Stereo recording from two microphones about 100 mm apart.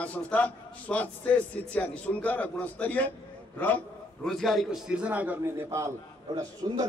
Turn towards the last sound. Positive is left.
turn(degrees=-55)  # may be behind; listen again after turning